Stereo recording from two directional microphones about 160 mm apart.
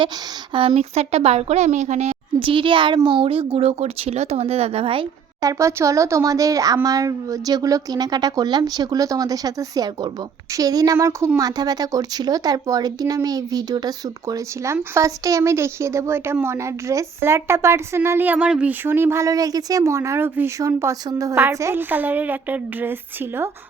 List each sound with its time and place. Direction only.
0.5 s a woman's voice: 35° right (ahead or behind)
5.4 s a woman's voice: 20° right (ahead or behind)